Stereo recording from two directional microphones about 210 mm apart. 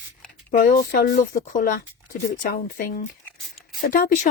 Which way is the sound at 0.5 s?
40° left (ahead or behind).